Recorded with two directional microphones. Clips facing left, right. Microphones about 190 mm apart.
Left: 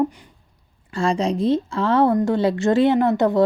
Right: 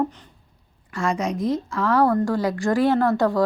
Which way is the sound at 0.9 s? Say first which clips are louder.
Left 4 dB; 30° left (ahead or behind).